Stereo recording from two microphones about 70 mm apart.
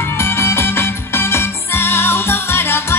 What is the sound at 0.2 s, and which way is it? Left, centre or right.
Music, left.